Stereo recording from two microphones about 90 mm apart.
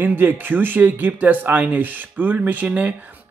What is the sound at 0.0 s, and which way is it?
Speech, 20° right (ahead or behind).